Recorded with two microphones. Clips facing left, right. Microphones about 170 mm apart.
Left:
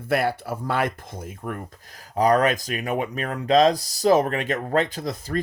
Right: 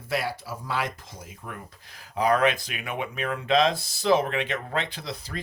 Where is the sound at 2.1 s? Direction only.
40° left (ahead or behind).